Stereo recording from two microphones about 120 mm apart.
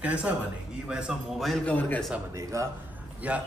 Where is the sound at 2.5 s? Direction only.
25° right (ahead or behind).